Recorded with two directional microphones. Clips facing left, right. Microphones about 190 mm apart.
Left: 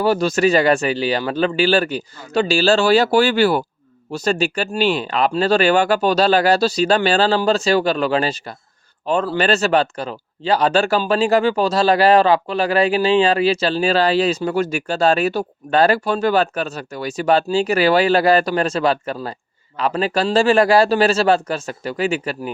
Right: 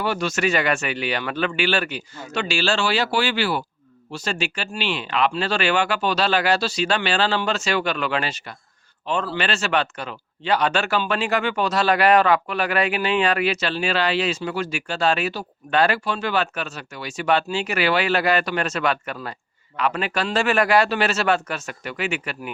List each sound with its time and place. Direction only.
0.0 s speech: 35° left (ahead or behind)